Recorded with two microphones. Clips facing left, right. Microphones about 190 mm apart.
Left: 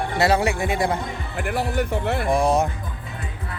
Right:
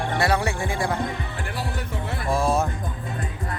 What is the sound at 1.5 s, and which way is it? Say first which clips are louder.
Speech: left 10 dB; 55° left (ahead or behind).